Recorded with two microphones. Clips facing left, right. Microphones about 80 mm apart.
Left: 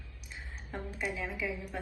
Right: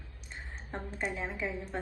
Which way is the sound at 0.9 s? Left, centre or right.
Right.